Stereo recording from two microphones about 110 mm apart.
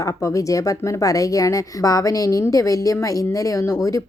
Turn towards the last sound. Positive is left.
turn(degrees=25)  # may be behind; listen again after turning